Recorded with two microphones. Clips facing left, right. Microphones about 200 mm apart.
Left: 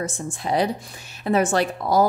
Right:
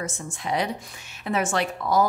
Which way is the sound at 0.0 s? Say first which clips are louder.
Left 4 dB; 35° left (ahead or behind).